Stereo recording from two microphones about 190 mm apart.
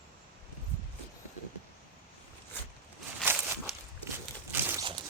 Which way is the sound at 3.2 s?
10° right (ahead or behind).